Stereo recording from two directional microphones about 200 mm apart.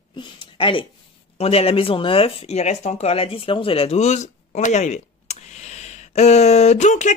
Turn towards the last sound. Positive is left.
turn(degrees=35)  # may be behind; listen again after turning